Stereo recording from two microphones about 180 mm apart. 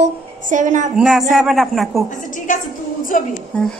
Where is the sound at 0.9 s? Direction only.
Centre (ahead or behind).